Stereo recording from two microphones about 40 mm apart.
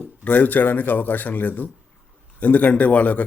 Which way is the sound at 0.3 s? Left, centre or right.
Left.